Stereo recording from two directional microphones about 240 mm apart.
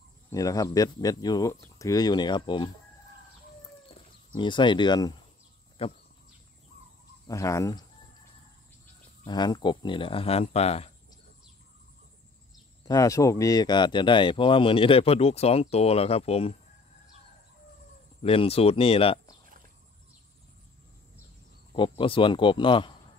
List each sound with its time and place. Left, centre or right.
0.3 s speech: centre
4.4 s speech: centre
7.2 s speech: centre
9.2 s speech: centre
12.8 s speech: centre
18.2 s speech: left
21.7 s speech: left